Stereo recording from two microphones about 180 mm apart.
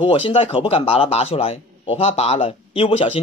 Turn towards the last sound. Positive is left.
turn(degrees=30)  # may be behind; listen again after turning